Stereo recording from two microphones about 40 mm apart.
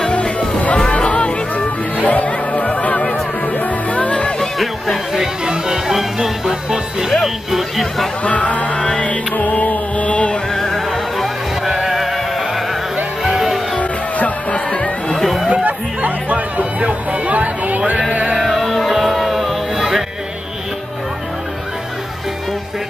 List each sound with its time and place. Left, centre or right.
0.1 s music: left
4.4 s a sound: centre
5.1 s music: centre
8.2 s music: left
8.7 s music: left
9.0 s music: left
10.5 s music: centre
11.6 s music: centre
13.2 s music: centre
13.7 s music: left
14.7 s chatter: left
15.1 s a sound: centre
15.5 s chatter: right
18.4 s music: centre